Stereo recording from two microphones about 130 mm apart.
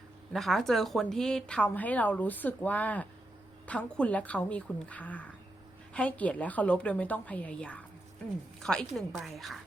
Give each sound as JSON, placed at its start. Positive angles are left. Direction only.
{"t": 0.3, "sound": "speech", "side_deg": 0}